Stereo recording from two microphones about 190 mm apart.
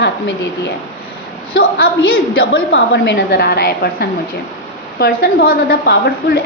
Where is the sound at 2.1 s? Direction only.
55° left (ahead or behind).